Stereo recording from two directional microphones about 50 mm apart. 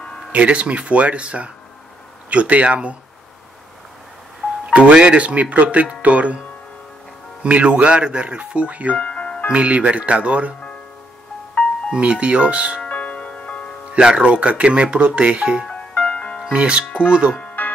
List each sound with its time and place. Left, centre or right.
0.3 s speech: right
4.7 s speech: right
7.4 s speech: right
8.9 s music: left
9.5 s speech: right
11.9 s speech: right
12.8 s music: left
13.9 s speech: centre
15.7 s music: left
16.5 s speech: right
17.6 s music: left